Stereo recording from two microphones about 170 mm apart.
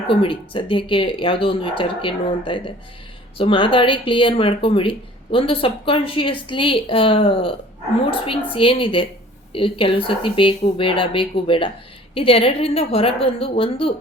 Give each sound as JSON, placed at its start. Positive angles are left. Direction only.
{"t": 0.1, "sound": "speech", "side_deg": 30}